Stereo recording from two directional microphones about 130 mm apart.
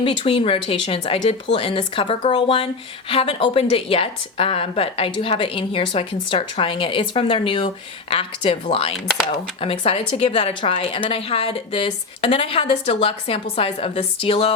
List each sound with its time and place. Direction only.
0.0 s a woman's voice: 45° left (ahead or behind)